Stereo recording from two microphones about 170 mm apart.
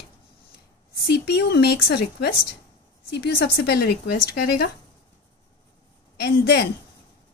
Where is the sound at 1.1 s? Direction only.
75° left (ahead or behind).